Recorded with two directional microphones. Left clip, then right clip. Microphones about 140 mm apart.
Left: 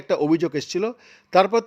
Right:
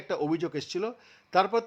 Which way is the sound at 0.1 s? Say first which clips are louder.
Left 9 dB; 35° left (ahead or behind).